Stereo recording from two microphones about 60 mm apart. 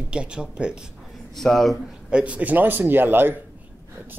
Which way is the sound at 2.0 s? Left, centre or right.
Centre.